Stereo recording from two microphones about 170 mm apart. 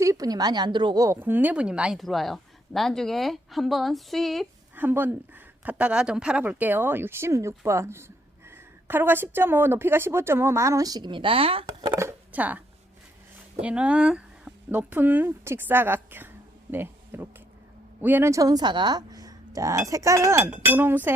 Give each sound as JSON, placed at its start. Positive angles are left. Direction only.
{"t": 0.0, "sound": "a woman's voice", "side_deg": -20}
{"t": 4.7, "sound": "speech", "side_deg": -10}
{"t": 11.9, "sound": "a sound", "side_deg": -15}
{"t": 13.6, "sound": "speech", "side_deg": -5}